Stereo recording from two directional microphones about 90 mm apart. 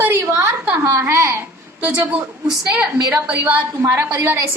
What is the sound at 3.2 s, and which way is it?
A child's voice, 20° right (ahead or behind).